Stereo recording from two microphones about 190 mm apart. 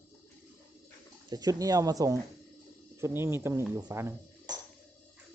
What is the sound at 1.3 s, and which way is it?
Speech, 20° right (ahead or behind).